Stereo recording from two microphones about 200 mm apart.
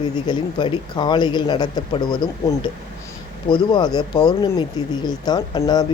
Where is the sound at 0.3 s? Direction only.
25° left (ahead or behind).